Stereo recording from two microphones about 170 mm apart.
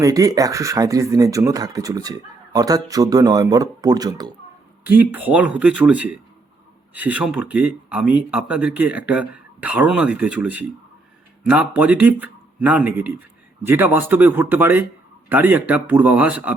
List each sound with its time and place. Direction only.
0.0 s speech: 20° right (ahead or behind)
4.9 s speech: 10° right (ahead or behind)